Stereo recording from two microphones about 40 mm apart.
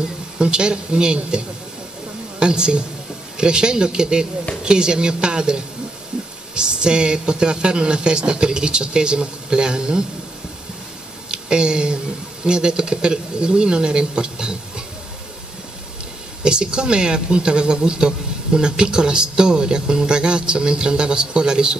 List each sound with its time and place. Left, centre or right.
0.4 s a man's voice: right
2.4 s a man's voice: right
11.2 s a sound: right
12.4 s a man's voice: right
16.4 s a man's voice: right